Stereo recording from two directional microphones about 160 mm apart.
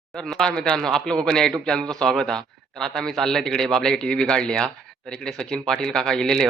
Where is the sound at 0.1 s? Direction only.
Centre (ahead or behind).